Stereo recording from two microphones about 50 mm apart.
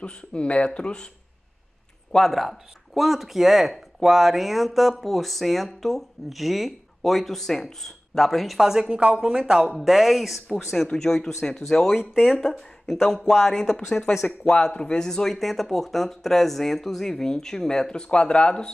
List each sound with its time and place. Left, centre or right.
0.0 s speech: left
2.1 s speech: centre
8.5 s speech: centre
9.8 s speech: centre
12.0 s speech: centre
13.0 s speech: centre